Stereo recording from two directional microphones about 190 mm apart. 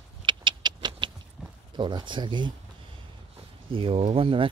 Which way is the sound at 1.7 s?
25° right (ahead or behind).